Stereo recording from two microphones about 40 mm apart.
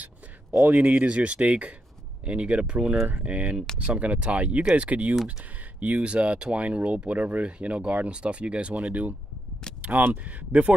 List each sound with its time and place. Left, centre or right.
0.7 s speech: right
9.8 s single-lens reflex camera: right
10.5 s speech: right